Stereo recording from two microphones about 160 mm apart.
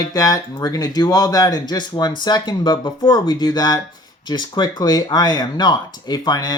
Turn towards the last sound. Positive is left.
turn(degrees=25)  # may be behind; listen again after turning